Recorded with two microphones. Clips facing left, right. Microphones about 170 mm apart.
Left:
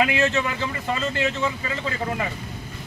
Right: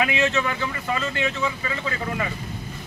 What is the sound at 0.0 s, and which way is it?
Speech, 25° left (ahead or behind).